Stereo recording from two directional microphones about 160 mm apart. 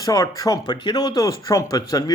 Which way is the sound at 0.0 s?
20° left (ahead or behind).